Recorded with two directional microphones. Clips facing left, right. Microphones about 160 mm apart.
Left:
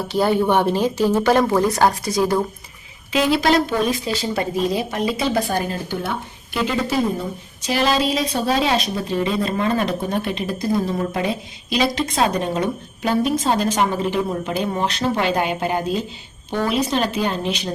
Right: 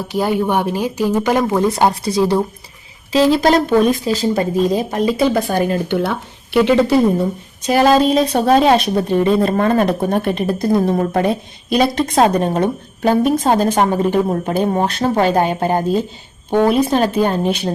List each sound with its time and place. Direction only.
0.1 s speech: 10° right (ahead or behind)
1.7 s speech: 25° right (ahead or behind)
3.1 s speech: 40° right (ahead or behind); by 6.9 s 65° right (ahead or behind)
7.6 s speech: 50° right (ahead or behind)